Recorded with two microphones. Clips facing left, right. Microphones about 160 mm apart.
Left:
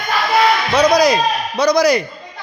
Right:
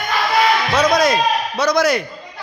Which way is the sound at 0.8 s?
Centre (ahead or behind).